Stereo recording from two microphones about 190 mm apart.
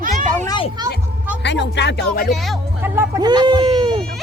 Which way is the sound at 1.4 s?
65° left (ahead or behind).